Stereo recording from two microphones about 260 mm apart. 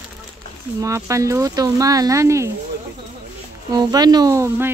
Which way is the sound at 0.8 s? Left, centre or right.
Centre.